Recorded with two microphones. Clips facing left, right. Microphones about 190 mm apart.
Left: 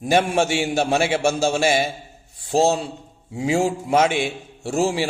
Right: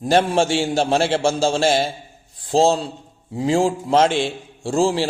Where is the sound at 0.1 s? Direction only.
10° left (ahead or behind).